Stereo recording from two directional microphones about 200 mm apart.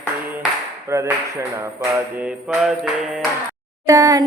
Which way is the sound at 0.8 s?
15° right (ahead or behind).